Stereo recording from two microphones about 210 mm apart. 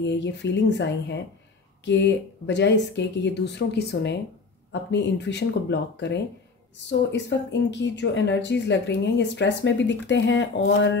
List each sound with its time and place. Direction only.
0.0 s a woman's voice: 55° left (ahead or behind)